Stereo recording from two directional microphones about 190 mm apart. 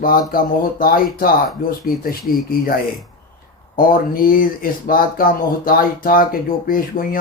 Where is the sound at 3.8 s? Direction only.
50° left (ahead or behind).